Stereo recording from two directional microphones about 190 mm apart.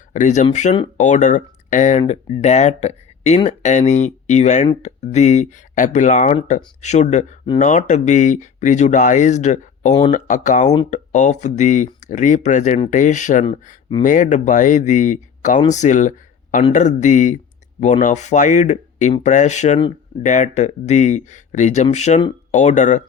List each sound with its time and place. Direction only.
0.1 s speech: 40° left (ahead or behind)
9.9 s speech: 25° left (ahead or behind)
10.2 s speech: 45° left (ahead or behind)